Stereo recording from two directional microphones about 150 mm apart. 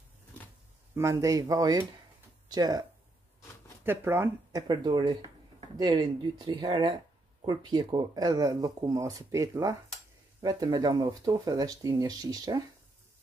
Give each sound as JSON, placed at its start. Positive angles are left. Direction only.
{"t": 0.9, "sound": "speech", "side_deg": -20}
{"t": 3.8, "sound": "speech", "side_deg": -15}